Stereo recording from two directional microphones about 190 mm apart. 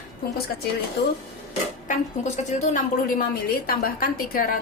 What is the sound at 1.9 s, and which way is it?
A woman's voice, 40° left (ahead or behind).